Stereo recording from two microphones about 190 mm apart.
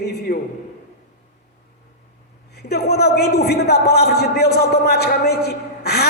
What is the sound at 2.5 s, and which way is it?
A man's voice, 55° left (ahead or behind).